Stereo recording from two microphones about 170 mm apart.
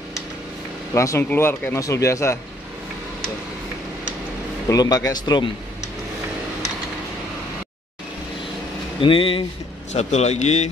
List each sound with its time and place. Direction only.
0.9 s speech: 15° left (ahead or behind)
4.6 s speech: 20° left (ahead or behind)
9.0 s speech: 30° left (ahead or behind)